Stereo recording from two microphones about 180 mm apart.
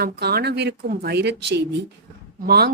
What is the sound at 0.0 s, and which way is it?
Speech, 60° right (ahead or behind).